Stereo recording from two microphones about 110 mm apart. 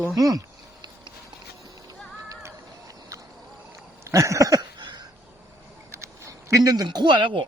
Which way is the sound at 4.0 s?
30° right (ahead or behind).